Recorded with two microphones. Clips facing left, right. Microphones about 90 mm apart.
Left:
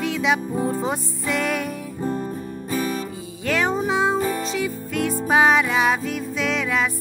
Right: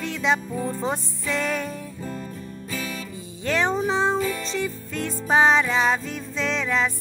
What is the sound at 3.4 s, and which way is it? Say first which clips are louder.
Music: left 1 dB; 5° left (ahead or behind).